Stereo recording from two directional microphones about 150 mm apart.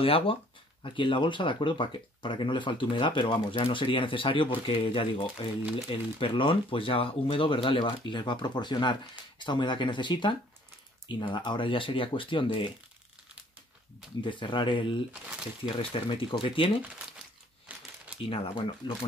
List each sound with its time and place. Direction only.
0.0 s speech: 35° left (ahead or behind)
14.2 s speech: 35° left (ahead or behind)
17.7 s crumpling: 10° right (ahead or behind)
18.2 s speech: 35° left (ahead or behind)